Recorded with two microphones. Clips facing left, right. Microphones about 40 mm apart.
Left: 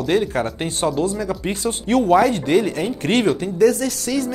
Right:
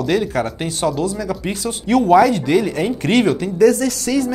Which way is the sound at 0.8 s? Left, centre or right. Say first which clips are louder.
Right 1 dB; left.